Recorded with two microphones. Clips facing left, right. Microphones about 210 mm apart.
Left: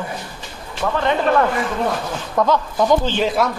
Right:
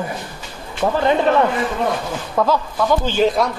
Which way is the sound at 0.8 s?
25° right (ahead or behind).